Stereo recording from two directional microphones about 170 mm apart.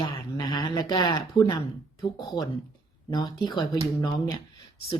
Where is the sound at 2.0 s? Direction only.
25° left (ahead or behind).